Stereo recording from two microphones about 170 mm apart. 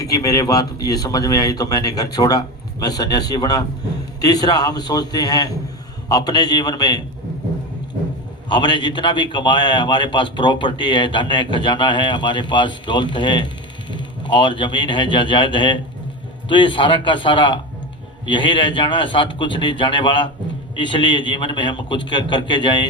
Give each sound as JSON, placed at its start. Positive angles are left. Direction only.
{"t": 0.0, "sound": "speech", "side_deg": 20}
{"t": 8.4, "sound": "speech", "side_deg": 25}